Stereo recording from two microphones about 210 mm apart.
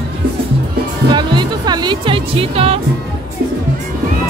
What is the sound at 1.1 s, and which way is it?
Music, 20° right (ahead or behind).